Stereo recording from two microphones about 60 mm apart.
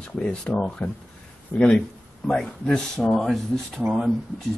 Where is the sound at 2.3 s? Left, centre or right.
Centre.